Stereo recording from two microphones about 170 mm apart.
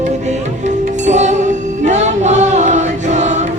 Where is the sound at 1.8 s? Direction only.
45° right (ahead or behind).